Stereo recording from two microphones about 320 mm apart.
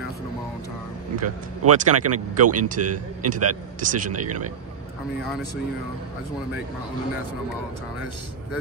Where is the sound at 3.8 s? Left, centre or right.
Right.